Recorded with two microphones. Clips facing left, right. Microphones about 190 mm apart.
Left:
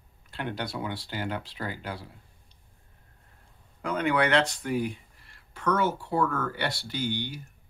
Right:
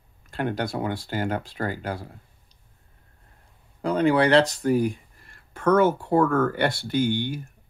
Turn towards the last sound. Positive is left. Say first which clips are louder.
# right 8 dB
turn(degrees=-50)  # may be behind; listen again after turning